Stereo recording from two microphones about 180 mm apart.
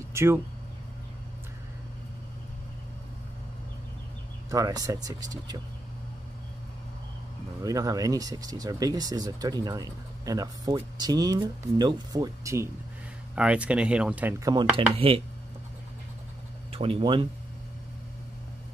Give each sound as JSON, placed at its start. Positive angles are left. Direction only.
{"t": 0.1, "sound": "speech", "side_deg": -15}
{"t": 4.5, "sound": "speech", "side_deg": -20}
{"t": 7.6, "sound": "speech", "side_deg": -20}
{"t": 13.3, "sound": "speech", "side_deg": -5}
{"t": 14.4, "sound": "speech", "side_deg": -25}
{"t": 16.7, "sound": "speech", "side_deg": -30}